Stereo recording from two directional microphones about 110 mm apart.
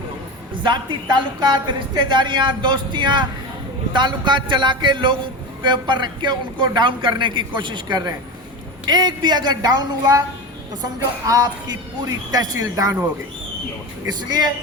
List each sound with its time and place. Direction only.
0.6 s a woman's voice: 45° right (ahead or behind)
14.3 s a woman's voice: 40° right (ahead or behind)